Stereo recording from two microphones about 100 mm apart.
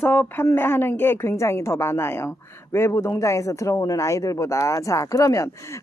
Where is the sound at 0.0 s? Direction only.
20° left (ahead or behind).